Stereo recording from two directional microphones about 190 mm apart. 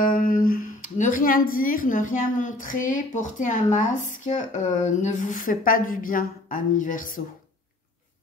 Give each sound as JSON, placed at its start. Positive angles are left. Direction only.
{"t": 0.0, "sound": "speech", "side_deg": 45}